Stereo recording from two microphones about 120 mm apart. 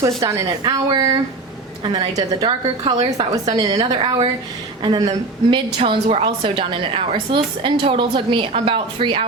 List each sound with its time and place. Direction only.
0.0 s a woman's voice: 25° right (ahead or behind)
1.8 s a woman's voice: 35° right (ahead or behind)